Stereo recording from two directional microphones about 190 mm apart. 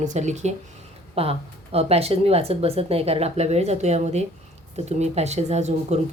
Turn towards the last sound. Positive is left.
turn(degrees=-35)  # may be behind; listen again after turning